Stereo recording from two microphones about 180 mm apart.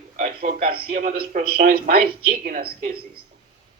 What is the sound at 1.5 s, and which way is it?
A woman's voice, 60° right (ahead or behind).